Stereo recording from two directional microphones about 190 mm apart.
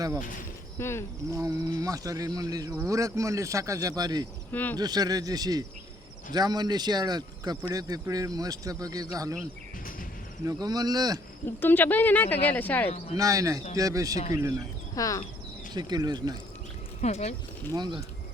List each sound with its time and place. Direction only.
0.8 s speech: 15° left (ahead or behind)
1.3 s speech: 15° right (ahead or behind)
4.5 s speech: 10° left (ahead or behind)
4.8 s speech: 20° right (ahead or behind)
10.4 s speech: 20° right (ahead or behind)
11.4 s speech: 10° left (ahead or behind)
13.1 s speech: 20° right (ahead or behind)
14.9 s speech: 15° left (ahead or behind)
15.7 s speech: 20° right (ahead or behind)
17.0 s speech: 35° left (ahead or behind)
17.7 s speech: 25° right (ahead or behind)